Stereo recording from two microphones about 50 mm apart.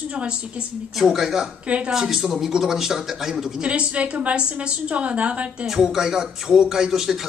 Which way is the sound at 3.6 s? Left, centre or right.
Right.